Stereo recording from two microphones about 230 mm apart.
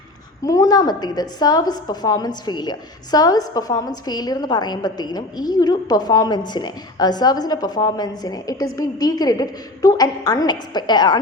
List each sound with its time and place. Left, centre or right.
0.4 s a woman's voice: centre